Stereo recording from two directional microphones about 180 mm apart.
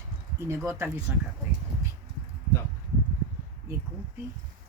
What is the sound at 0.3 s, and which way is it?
Speech, 15° right (ahead or behind).